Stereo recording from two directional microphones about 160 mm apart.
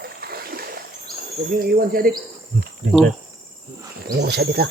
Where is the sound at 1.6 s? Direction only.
65° right (ahead or behind).